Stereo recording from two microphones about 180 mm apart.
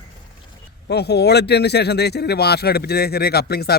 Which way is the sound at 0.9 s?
65° left (ahead or behind).